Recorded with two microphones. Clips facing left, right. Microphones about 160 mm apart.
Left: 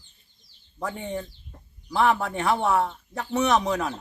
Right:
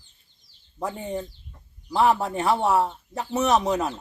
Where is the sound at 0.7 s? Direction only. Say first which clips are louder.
Right 1 dB; 5° right (ahead or behind).